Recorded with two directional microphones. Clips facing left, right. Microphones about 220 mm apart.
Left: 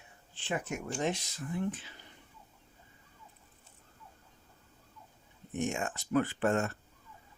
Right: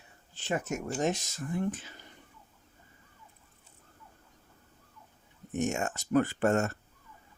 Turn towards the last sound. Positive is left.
turn(degrees=-45)  # may be behind; listen again after turning